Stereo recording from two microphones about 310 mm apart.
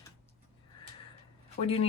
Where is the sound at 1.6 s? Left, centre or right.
Centre.